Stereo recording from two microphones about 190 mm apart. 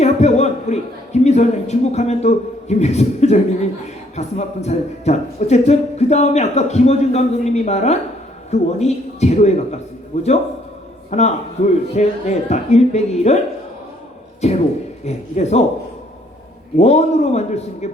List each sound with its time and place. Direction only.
0.0 s a man's voice: 35° left (ahead or behind)
14.4 s a man's voice: 35° left (ahead or behind)
16.7 s a man's voice: 35° left (ahead or behind)